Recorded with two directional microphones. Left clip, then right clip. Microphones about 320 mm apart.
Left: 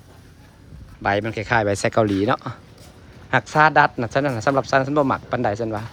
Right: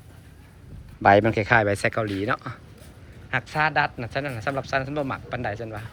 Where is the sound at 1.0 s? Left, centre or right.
Centre.